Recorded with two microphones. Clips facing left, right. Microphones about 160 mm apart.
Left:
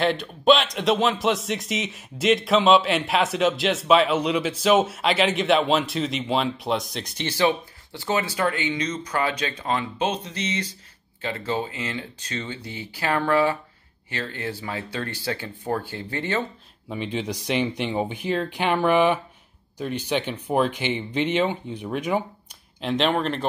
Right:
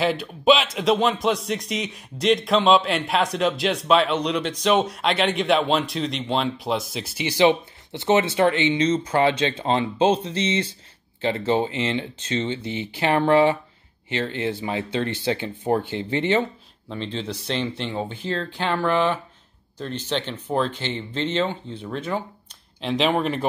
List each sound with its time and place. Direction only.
0.0 s speech: centre (ahead or behind); by 16.4 s 20° right (ahead or behind)
16.9 s speech: 10° left (ahead or behind)
22.8 s speech: centre (ahead or behind)